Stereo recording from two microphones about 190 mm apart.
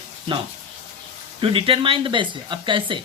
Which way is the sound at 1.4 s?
30° right (ahead or behind).